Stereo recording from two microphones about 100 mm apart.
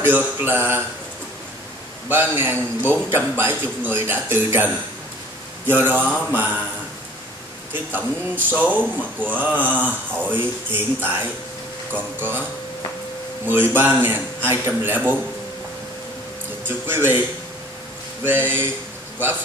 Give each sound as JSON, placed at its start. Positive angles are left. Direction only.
{"t": 0.0, "sound": "speech", "side_deg": -20}
{"t": 2.3, "sound": "speech", "side_deg": -20}
{"t": 5.7, "sound": "speech", "side_deg": -20}
{"t": 7.7, "sound": "speech", "side_deg": -20}
{"t": 13.5, "sound": "speech", "side_deg": -20}
{"t": 16.6, "sound": "speech", "side_deg": -20}
{"t": 18.2, "sound": "speech", "side_deg": -20}